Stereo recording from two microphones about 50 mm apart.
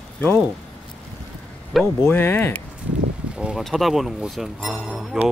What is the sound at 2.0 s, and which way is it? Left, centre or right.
Speech, left.